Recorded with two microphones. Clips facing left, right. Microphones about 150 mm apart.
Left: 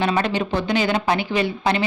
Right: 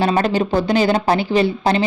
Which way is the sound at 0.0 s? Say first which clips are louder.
Right 4 dB; 35° right (ahead or behind).